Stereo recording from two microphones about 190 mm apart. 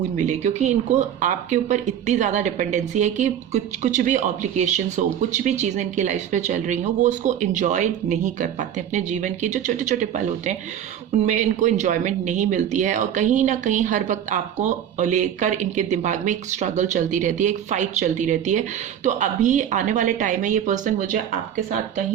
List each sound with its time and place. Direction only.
0.2 s speech: 40° right (ahead or behind)